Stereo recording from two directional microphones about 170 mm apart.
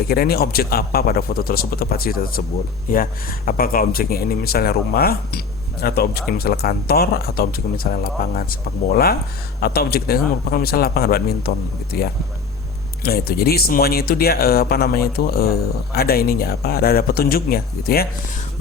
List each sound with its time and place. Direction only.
0.1 s speech: 65° left (ahead or behind)
13.0 s speech: 65° left (ahead or behind)